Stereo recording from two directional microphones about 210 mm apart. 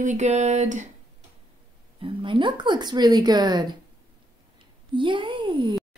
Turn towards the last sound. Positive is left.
turn(degrees=-25)  # may be behind; listen again after turning